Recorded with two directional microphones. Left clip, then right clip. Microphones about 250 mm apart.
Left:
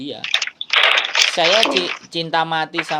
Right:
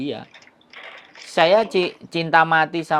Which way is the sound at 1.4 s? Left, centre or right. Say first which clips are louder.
Right 4 dB; centre.